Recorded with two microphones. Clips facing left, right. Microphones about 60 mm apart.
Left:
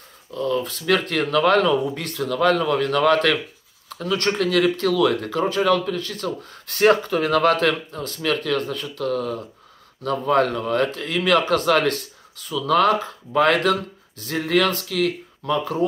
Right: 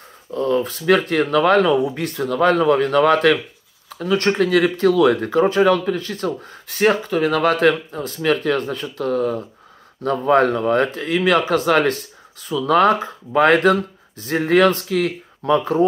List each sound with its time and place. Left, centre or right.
0.3 s speech: right
6.7 s speech: centre; by 15.8 s right